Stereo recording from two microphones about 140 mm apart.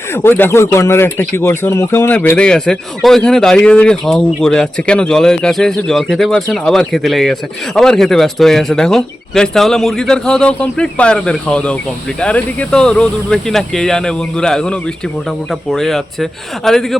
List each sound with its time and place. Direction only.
0.1 s a man's voice: 15° left (ahead or behind)